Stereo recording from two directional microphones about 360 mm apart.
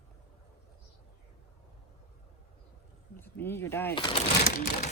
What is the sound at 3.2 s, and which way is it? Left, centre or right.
Speech, centre.